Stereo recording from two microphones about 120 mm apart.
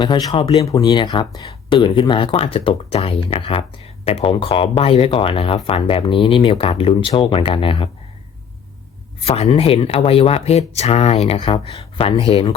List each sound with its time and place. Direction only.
0.0 s speech: 35° left (ahead or behind)
9.2 s speech: 55° left (ahead or behind)
11.3 s speech: 40° left (ahead or behind)
12.3 s speech: 50° left (ahead or behind)